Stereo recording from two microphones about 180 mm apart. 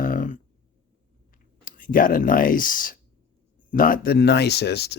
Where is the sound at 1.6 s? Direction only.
50° left (ahead or behind); by 4.9 s 65° left (ahead or behind).